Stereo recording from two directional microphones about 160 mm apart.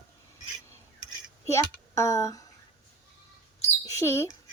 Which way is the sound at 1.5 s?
20° left (ahead or behind).